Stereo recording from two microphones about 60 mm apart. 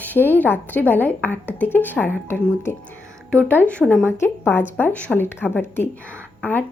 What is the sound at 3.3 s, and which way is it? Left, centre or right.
Speech, left.